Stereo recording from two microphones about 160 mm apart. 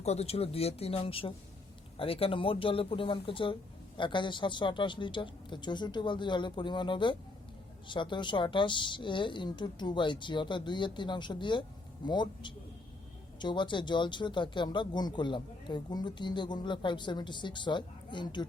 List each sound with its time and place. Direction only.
0.0 s speech: 40° left (ahead or behind)